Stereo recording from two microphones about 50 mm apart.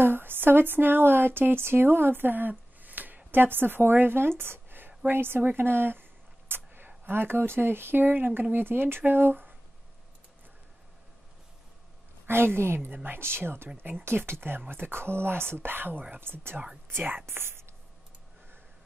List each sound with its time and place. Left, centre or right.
0.0 s speech: right
6.5 s a sound: right
7.1 s speech: right
12.3 s speech: right
12.9 s speech: right
16.2 s speech: right
17.3 s speech: right